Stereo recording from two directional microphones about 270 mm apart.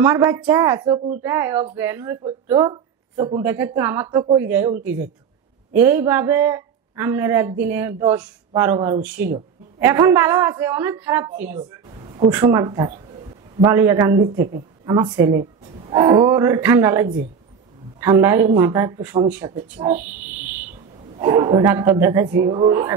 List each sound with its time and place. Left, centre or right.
0.0 s a man's voice: centre
5.8 s a man's voice: centre
11.9 s a sound: centre
12.3 s a man's voice: centre